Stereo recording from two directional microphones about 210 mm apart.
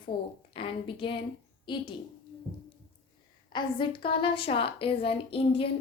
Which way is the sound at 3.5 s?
20° left (ahead or behind).